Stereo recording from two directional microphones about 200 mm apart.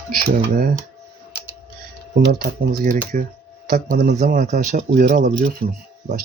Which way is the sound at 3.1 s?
40° right (ahead or behind).